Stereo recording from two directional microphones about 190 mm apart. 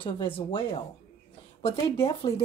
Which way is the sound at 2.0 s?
30° left (ahead or behind).